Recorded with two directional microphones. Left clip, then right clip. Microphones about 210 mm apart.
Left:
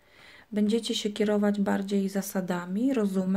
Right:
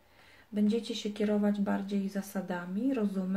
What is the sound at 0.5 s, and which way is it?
Speech, 45° left (ahead or behind).